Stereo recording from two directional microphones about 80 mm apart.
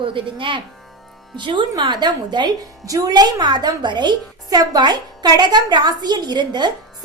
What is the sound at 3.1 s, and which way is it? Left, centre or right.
A woman's voice, right.